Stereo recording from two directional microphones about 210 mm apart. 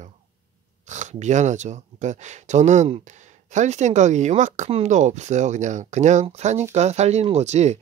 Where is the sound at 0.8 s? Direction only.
35° right (ahead or behind).